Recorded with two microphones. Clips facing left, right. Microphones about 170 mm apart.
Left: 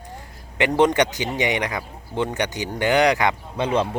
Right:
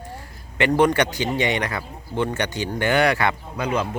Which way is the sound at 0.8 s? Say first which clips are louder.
Left 1 dB; 20° left (ahead or behind).